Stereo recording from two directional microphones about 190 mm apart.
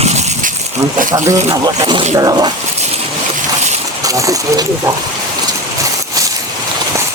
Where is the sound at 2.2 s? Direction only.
20° right (ahead or behind).